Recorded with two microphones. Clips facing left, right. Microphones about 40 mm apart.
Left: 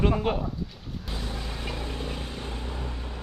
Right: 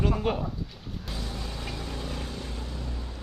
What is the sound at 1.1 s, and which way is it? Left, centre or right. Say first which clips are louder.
Vehicle: left 2 dB; centre.